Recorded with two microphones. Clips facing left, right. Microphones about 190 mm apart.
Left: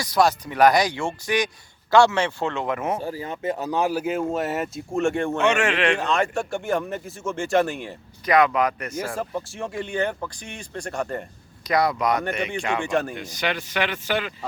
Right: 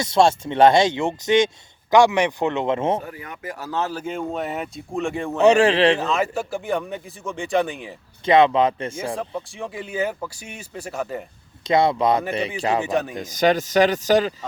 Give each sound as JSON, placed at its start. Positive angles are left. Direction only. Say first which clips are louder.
{"t": 0.0, "sound": "speech", "louder": "right 3 dB", "side_deg": -25}
{"t": 3.0, "sound": "speech", "louder": "left 6 dB", "side_deg": 30}
{"t": 5.4, "sound": "speech", "louder": "right 9 dB", "side_deg": -35}
{"t": 6.0, "sound": "speech", "louder": "even", "side_deg": 0}
{"t": 8.2, "sound": "speech", "louder": "right 4 dB", "side_deg": -25}
{"t": 9.0, "sound": "speech", "louder": "right 1 dB", "side_deg": 0}
{"t": 11.6, "sound": "speech", "louder": "right 4 dB", "side_deg": -25}
{"t": 12.8, "sound": "speech", "louder": "right 1 dB", "side_deg": 0}
{"t": 13.3, "sound": "speech", "louder": "right 10 dB", "side_deg": -40}